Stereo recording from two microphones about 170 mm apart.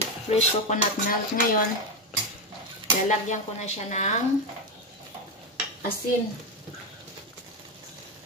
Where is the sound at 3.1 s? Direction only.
45° left (ahead or behind).